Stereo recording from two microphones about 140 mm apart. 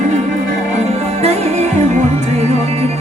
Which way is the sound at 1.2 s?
50° right (ahead or behind).